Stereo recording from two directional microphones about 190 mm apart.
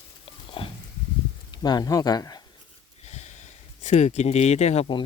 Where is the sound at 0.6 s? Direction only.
30° left (ahead or behind).